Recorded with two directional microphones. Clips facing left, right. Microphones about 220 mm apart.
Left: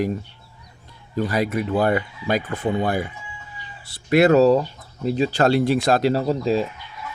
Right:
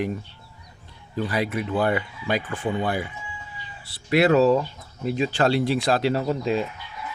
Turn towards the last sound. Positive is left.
turn(degrees=35)  # may be behind; listen again after turning